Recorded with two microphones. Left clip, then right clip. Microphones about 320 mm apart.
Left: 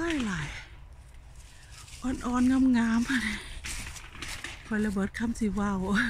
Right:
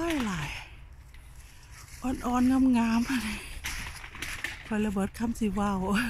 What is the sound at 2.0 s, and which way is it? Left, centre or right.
Speech, centre.